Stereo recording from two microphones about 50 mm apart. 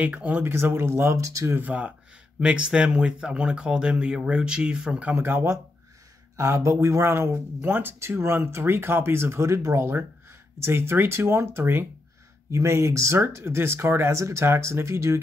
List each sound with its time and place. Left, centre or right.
0.0 s speech: right
0.4 s speech: right
1.1 s speech: right
1.7 s speech: right
2.4 s speech: right
5.2 s speech: right
6.3 s speech: right
7.6 s speech: right
9.5 s speech: right
9.8 s speech: right
12.4 s speech: right
14.1 s speech: right